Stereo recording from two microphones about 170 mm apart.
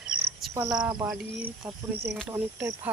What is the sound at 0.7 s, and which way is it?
Speech, 5° right (ahead or behind).